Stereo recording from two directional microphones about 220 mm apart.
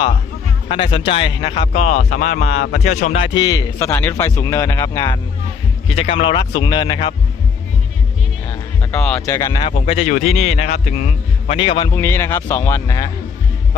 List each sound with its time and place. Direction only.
0.7 s a man's voice: 25° left (ahead or behind)
8.4 s a man's voice: 10° left (ahead or behind)